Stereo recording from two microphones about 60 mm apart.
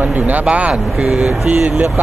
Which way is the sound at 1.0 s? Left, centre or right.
Centre.